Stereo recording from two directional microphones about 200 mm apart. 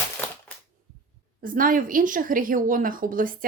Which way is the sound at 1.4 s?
45° right (ahead or behind).